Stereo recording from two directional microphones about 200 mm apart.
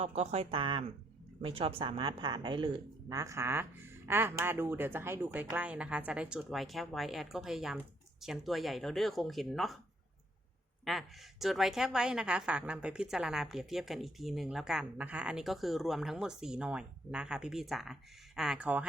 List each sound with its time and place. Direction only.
0.0 s a woman's voice: 30° right (ahead or behind); by 9.7 s centre (ahead or behind)
10.8 s a woman's voice: centre (ahead or behind)